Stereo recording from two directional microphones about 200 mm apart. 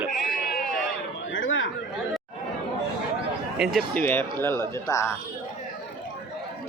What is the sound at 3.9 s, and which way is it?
Speech, 10° left (ahead or behind).